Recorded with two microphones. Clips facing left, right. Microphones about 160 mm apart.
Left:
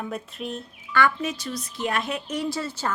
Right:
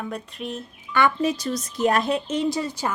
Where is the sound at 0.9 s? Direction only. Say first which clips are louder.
Right 1 dB; 20° right (ahead or behind).